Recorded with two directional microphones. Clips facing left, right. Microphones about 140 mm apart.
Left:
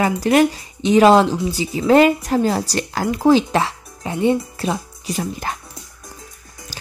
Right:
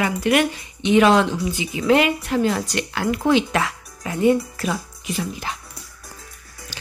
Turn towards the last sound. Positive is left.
turn(degrees=40)  # may be behind; listen again after turning